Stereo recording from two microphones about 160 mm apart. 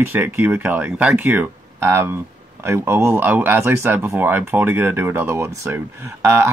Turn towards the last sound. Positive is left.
turn(degrees=-15)  # may be behind; listen again after turning